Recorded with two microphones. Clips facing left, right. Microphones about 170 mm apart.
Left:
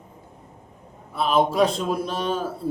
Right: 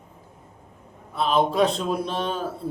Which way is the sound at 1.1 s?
5° left (ahead or behind).